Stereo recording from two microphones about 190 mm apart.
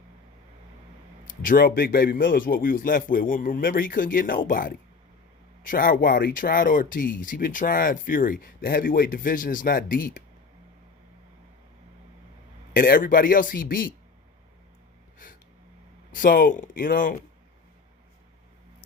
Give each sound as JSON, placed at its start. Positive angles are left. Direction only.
{"t": 1.2, "sound": "speech", "side_deg": 50}
{"t": 12.7, "sound": "speech", "side_deg": 50}
{"t": 16.1, "sound": "speech", "side_deg": 45}